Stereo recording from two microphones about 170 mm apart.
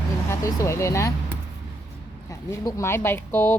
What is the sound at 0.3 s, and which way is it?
Speech, 15° left (ahead or behind).